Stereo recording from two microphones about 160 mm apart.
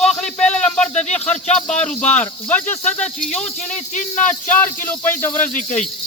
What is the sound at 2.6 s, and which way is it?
Speech, 50° left (ahead or behind).